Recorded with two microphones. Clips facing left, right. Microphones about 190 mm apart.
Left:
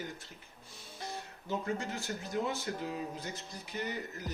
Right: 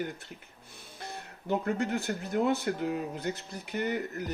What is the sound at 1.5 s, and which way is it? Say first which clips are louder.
Speech: right 6 dB; 60° right (ahead or behind).